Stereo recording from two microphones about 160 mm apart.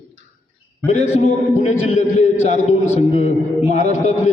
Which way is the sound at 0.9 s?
45° left (ahead or behind).